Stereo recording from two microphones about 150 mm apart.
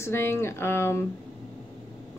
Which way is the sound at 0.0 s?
15° left (ahead or behind).